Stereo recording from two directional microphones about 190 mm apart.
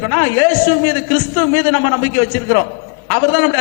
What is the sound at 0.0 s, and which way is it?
A man's voice, 20° left (ahead or behind).